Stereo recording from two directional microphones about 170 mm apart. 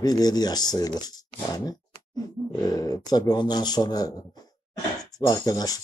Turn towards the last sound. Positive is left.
turn(degrees=20)  # may be behind; listen again after turning